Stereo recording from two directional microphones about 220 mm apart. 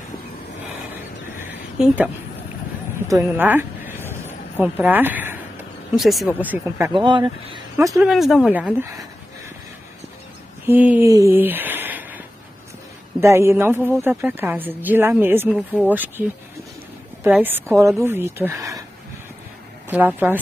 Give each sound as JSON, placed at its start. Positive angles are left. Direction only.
{"t": 1.4, "sound": "a sound", "side_deg": -10}
{"t": 3.1, "sound": "speech", "side_deg": -10}
{"t": 6.9, "sound": "speech", "side_deg": -20}
{"t": 8.1, "sound": "speech", "side_deg": 0}
{"t": 10.7, "sound": "speech", "side_deg": -5}
{"t": 13.2, "sound": "a woman's voice", "side_deg": -10}
{"t": 19.9, "sound": "speech", "side_deg": -10}